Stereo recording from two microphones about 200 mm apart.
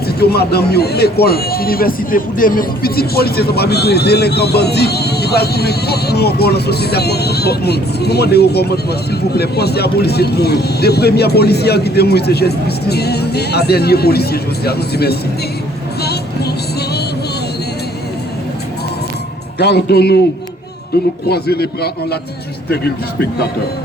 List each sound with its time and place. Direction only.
0.2 s a man's voice: 55° left (ahead or behind)
16.0 s music: 55° left (ahead or behind)
19.5 s a man's voice: 55° left (ahead or behind)